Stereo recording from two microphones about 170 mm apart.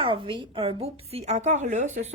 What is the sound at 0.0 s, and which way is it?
A woman's voice, 30° right (ahead or behind).